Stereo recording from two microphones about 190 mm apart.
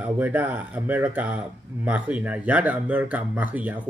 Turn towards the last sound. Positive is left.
turn(degrees=-10)  # may be behind; listen again after turning